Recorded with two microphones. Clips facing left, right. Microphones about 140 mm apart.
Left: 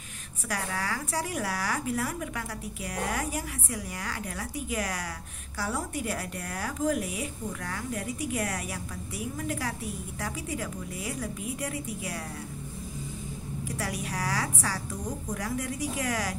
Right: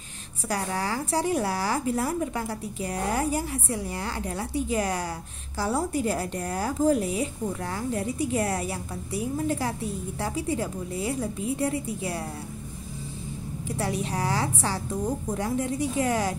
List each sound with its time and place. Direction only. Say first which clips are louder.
0.5 s a woman's voice: right 4 dB; 30° right (ahead or behind)
13.7 s a woman's voice: right 6 dB; 30° right (ahead or behind)